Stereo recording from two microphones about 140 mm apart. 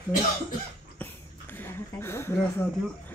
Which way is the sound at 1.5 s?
15° left (ahead or behind).